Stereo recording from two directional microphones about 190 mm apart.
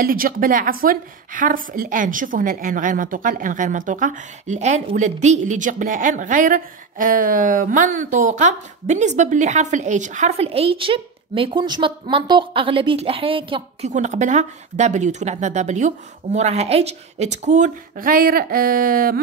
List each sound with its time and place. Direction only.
0.0 s a woman's voice: 50° right (ahead or behind)